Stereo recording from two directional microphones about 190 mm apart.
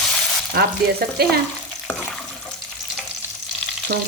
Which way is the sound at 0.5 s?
55° right (ahead or behind).